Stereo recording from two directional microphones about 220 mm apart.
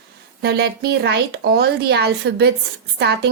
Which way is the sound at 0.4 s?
45° right (ahead or behind).